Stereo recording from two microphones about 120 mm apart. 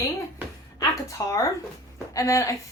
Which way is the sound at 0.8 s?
25° left (ahead or behind).